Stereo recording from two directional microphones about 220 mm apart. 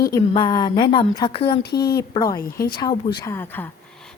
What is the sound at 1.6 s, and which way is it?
Speech, 45° left (ahead or behind).